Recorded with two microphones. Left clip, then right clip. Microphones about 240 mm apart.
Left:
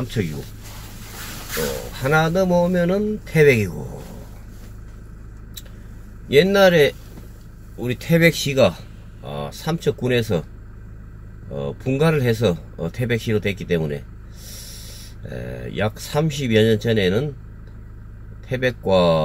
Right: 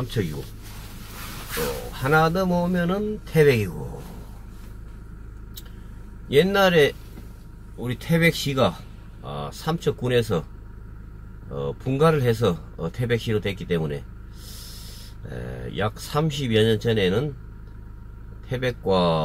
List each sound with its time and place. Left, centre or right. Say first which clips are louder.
1.6 s speech: left 3 dB; centre
6.2 s speech: left 4 dB; centre
11.5 s speech: left 3 dB; centre
18.5 s speech: left 4 dB; centre